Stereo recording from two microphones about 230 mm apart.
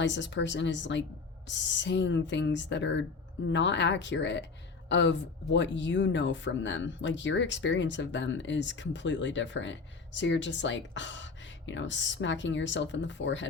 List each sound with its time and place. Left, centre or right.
0.0 s speech: left